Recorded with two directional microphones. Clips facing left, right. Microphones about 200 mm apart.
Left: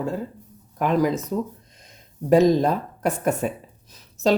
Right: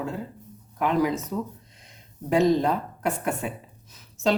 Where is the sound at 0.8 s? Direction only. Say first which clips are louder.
Left 3 dB; 45° left (ahead or behind).